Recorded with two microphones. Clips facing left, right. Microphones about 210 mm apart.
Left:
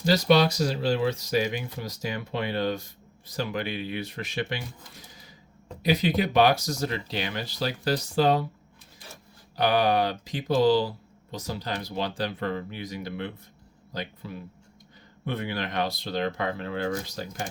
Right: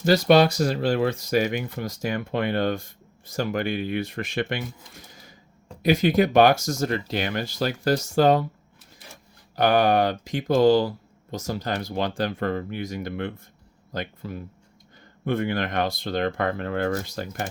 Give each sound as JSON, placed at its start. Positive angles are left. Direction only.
{"t": 0.0, "sound": "speech", "side_deg": -55}
{"t": 9.6, "sound": "speech", "side_deg": -45}